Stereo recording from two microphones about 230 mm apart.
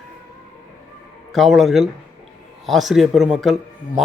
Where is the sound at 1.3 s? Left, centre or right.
Centre.